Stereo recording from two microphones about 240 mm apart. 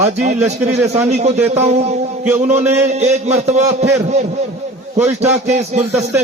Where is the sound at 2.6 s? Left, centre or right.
Centre.